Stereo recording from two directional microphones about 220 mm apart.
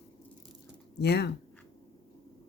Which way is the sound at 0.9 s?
50° left (ahead or behind).